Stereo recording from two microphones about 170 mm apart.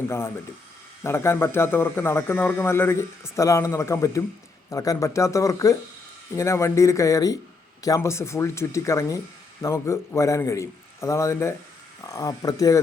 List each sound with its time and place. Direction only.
1.0 s speech: 15° left (ahead or behind)